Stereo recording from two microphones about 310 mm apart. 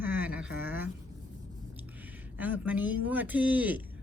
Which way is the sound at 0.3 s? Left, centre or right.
Centre.